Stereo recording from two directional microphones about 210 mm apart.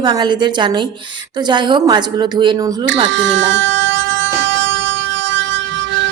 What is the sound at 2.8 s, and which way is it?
Music, 65° right (ahead or behind).